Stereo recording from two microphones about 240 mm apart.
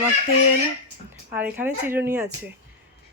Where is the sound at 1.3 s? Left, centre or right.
Centre.